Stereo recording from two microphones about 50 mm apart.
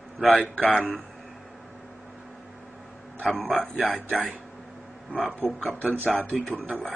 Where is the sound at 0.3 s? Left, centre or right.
Left.